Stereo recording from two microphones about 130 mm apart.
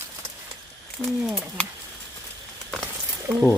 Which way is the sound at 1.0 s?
15° left (ahead or behind).